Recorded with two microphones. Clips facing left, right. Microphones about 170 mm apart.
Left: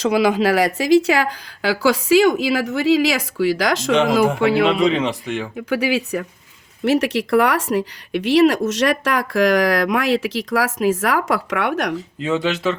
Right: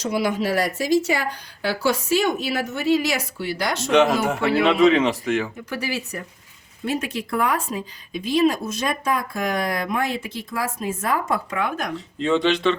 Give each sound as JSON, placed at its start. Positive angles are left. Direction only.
{"t": 0.0, "sound": "speech", "side_deg": 90}
{"t": 4.6, "sound": "speech", "side_deg": 0}
{"t": 5.5, "sound": "speech", "side_deg": 70}
{"t": 11.9, "sound": "speech", "side_deg": 5}